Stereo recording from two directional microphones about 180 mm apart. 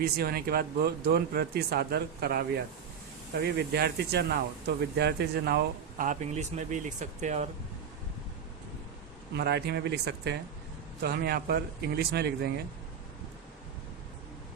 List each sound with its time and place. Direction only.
0.0 s speech: 60° right (ahead or behind)
3.4 s speech: 60° right (ahead or behind); by 7.4 s 40° right (ahead or behind)
9.3 s speech: 65° right (ahead or behind)